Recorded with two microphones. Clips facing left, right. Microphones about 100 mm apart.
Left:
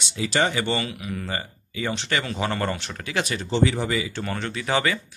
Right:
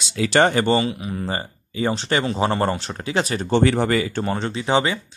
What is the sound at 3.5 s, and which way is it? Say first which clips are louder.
Speech: right 5 dB; 60° right (ahead or behind).